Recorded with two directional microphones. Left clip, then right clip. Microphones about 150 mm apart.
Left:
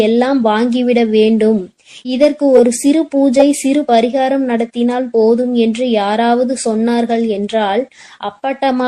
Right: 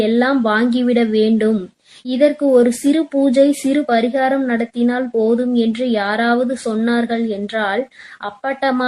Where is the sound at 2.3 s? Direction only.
30° left (ahead or behind).